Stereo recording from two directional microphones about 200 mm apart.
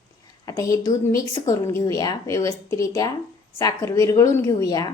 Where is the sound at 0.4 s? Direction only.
15° left (ahead or behind).